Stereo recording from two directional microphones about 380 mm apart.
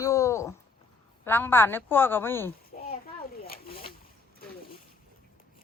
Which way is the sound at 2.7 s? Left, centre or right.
Left.